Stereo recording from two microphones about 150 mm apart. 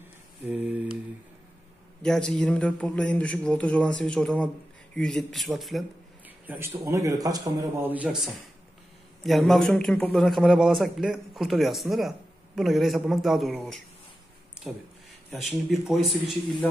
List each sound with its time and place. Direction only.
0.5 s mantra: 10° right (ahead or behind)
2.0 s speech: 5° left (ahead or behind)
6.2 s speech: 10° right (ahead or behind)
7.8 s speech: 10° right (ahead or behind)
15.7 s speech: centre (ahead or behind)